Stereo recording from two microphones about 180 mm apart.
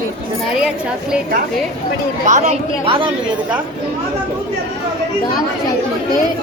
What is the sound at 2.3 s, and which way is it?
Speech, 40° right (ahead or behind).